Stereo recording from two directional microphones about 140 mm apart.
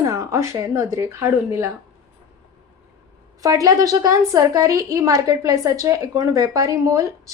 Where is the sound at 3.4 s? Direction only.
25° right (ahead or behind).